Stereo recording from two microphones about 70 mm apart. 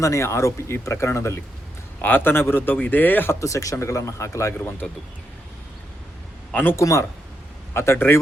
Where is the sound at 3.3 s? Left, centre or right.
Left.